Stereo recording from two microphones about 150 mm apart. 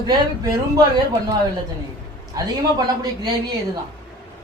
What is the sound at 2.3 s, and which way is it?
Speech, 30° right (ahead or behind).